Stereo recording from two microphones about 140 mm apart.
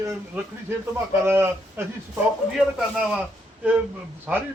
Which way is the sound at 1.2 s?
15° right (ahead or behind).